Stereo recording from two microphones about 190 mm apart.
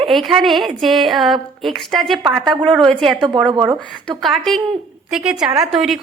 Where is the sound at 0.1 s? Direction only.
Centre (ahead or behind).